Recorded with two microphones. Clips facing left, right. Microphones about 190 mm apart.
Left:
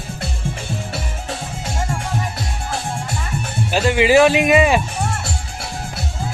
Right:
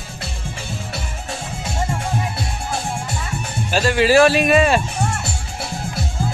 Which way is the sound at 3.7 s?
15° left (ahead or behind).